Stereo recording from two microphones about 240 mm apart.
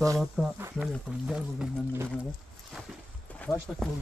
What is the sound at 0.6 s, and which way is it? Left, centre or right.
Speech, centre.